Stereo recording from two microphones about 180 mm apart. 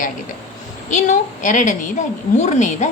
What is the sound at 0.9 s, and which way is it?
A woman's voice, 40° left (ahead or behind).